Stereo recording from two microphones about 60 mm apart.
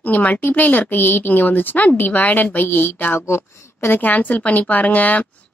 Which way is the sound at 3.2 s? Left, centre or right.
Left.